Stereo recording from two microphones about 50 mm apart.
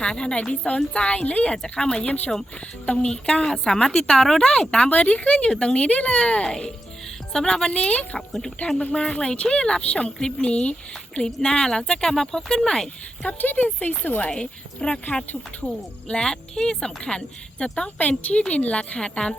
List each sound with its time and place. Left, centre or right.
0.0 s speech: centre
1.6 s speech: centre
3.1 s speech: centre
8.3 s speech: centre
12.1 s speech: centre
13.2 s speech: left
14.3 s speech: centre
15.0 s speech: left
15.6 s speech: centre
17.8 s speech: left